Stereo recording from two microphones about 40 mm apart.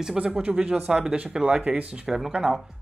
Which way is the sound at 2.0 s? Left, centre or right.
Centre.